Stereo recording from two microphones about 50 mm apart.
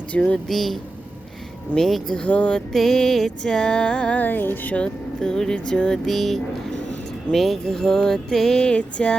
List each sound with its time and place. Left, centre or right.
0.1 s a sound: left
0.4 s speech: centre
1.7 s music: centre
2.2 s a sound: left
2.7 s music: centre
4.2 s music: left
4.7 s music: centre
6.1 s speech: centre
7.3 s music: centre; by 9.1 s left